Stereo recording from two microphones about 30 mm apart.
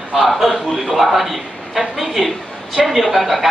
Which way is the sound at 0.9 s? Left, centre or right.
Centre.